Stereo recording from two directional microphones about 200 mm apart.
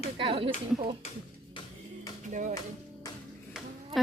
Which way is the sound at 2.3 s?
40° right (ahead or behind).